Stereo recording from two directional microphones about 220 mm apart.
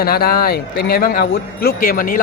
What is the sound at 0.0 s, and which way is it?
A man's voice, 45° left (ahead or behind).